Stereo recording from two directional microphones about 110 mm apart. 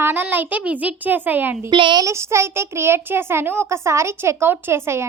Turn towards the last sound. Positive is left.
turn(degrees=-25)  # may be behind; listen again after turning